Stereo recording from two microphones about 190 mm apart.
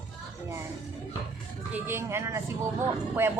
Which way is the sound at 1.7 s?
15° right (ahead or behind).